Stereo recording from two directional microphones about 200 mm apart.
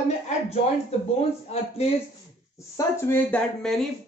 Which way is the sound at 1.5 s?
30° left (ahead or behind).